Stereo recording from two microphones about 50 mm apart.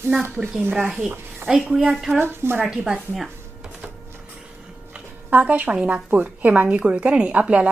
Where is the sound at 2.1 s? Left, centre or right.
Right.